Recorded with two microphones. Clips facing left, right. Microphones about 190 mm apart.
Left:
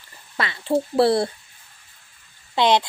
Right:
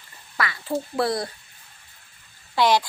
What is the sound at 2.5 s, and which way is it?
Speech, 20° left (ahead or behind).